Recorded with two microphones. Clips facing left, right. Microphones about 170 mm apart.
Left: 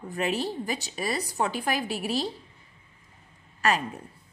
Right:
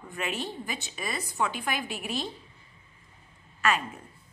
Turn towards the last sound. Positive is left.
turn(degrees=35)  # may be behind; listen again after turning